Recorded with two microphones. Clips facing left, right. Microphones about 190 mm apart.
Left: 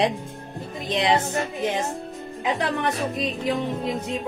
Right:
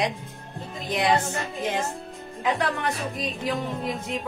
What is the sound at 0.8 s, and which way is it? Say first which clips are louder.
Music: left 1 dB; 20° left (ahead or behind).